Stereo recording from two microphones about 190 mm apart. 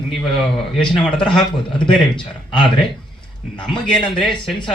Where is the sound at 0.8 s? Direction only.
5° left (ahead or behind).